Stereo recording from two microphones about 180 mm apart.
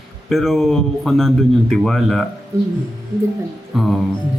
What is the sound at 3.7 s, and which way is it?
Speech, centre (ahead or behind).